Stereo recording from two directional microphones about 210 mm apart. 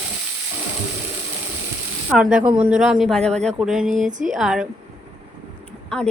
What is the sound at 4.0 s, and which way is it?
Speech, 35° right (ahead or behind).